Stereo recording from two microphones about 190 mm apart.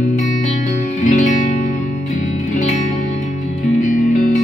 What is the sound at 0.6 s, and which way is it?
Music, 40° left (ahead or behind).